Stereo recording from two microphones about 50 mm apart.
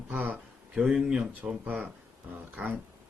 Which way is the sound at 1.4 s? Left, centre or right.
Right.